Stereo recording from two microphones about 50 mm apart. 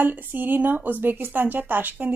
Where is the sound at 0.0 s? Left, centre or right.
Right.